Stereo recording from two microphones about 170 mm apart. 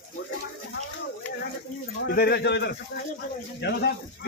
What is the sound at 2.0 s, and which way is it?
Speech, 65° left (ahead or behind).